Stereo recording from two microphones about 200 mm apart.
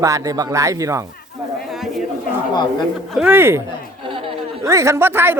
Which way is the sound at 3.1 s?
10° right (ahead or behind).